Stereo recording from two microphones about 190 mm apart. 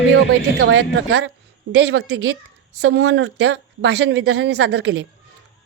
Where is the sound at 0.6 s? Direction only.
65° right (ahead or behind).